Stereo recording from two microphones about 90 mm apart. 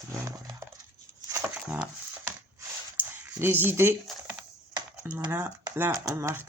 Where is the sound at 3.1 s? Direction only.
25° right (ahead or behind).